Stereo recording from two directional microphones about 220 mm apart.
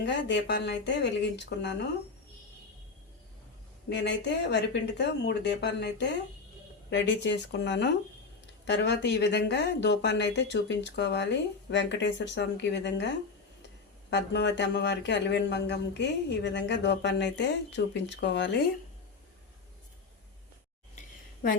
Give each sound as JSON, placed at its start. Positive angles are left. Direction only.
{"t": 0.0, "sound": "speech", "side_deg": 50}
{"t": 3.8, "sound": "speech", "side_deg": 50}